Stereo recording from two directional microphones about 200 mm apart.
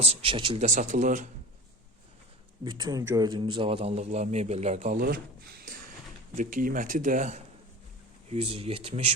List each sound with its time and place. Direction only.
0.0 s speech: 30° right (ahead or behind)
2.6 s a man's voice: 20° right (ahead or behind); by 5.0 s 35° right (ahead or behind)
5.6 s a sound: 45° right (ahead or behind)
6.3 s a man's voice: 40° right (ahead or behind)